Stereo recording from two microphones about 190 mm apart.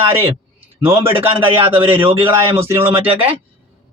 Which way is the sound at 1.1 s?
25° right (ahead or behind).